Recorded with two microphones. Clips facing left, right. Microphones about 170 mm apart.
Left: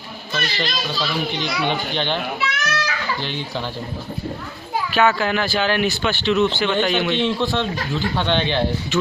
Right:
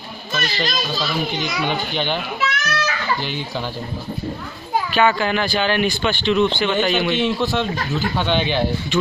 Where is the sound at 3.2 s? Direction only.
10° right (ahead or behind).